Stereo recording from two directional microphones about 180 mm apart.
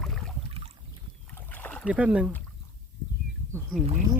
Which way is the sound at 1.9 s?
5° right (ahead or behind).